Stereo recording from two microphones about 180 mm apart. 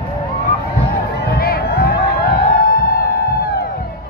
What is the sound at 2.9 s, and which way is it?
Music, 55° left (ahead or behind).